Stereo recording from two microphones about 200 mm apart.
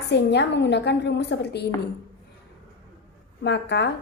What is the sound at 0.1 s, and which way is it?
A woman's voice, 60° left (ahead or behind).